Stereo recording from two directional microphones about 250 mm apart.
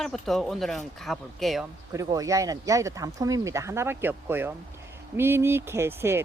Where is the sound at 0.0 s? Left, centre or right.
Centre.